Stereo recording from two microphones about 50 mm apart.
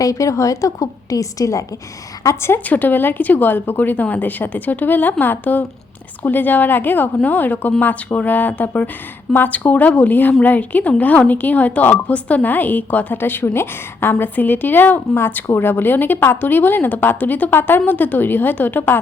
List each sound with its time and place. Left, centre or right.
0.2 s a woman's voice: left
2.2 s a woman's voice: left
2.6 s speech: left
17.5 s speech: left
17.8 s speech: left